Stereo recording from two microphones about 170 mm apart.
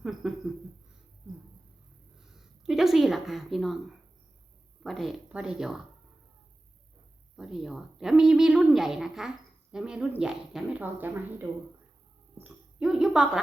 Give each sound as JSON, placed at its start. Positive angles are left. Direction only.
{"t": 0.0, "sound": "a sound", "side_deg": 0}
{"t": 2.6, "sound": "a woman's voice", "side_deg": 0}
{"t": 4.8, "sound": "a woman's voice", "side_deg": 0}
{"t": 7.3, "sound": "a woman's voice", "side_deg": 0}